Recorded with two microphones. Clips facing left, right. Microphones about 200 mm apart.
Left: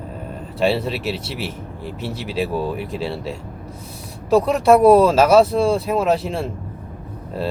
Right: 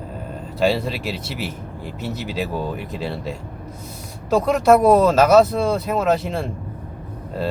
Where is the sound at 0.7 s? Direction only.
5° left (ahead or behind).